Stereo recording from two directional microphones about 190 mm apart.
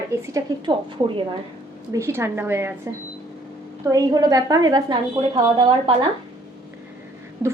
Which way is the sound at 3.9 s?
20° right (ahead or behind).